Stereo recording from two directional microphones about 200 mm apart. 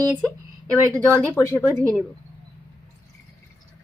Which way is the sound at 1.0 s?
10° left (ahead or behind).